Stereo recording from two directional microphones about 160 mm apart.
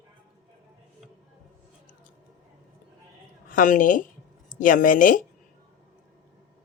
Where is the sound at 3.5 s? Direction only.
55° left (ahead or behind).